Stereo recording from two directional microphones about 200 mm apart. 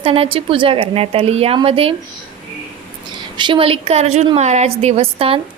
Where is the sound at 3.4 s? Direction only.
25° right (ahead or behind).